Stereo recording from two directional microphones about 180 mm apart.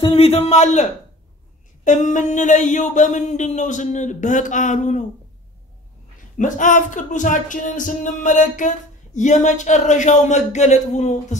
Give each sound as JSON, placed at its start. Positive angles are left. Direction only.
{"t": 0.0, "sound": "a man's voice", "side_deg": 35}
{"t": 1.9, "sound": "speech", "side_deg": 40}
{"t": 6.3, "sound": "speech", "side_deg": 45}